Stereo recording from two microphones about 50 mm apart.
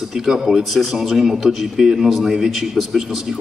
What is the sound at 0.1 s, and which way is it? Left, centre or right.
Speech, centre.